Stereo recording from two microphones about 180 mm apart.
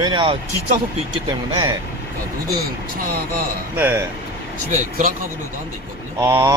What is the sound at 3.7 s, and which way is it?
Speech, 10° right (ahead or behind).